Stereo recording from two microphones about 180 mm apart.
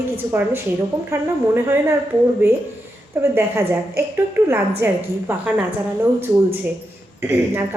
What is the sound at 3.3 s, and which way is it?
A woman's voice, 15° right (ahead or behind).